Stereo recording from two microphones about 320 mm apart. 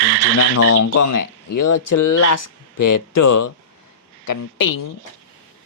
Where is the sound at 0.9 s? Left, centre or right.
Left.